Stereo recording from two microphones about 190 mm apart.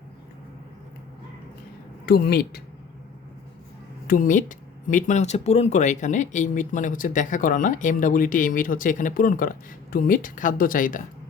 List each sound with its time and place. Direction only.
2.0 s speech: 55° left (ahead or behind)
4.0 s speech: 45° left (ahead or behind)